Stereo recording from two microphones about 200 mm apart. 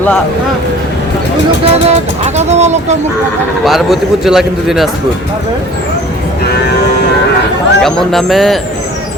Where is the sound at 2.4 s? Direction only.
35° right (ahead or behind).